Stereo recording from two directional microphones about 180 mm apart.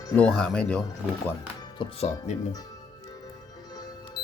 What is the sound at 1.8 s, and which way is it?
Speech, 35° left (ahead or behind).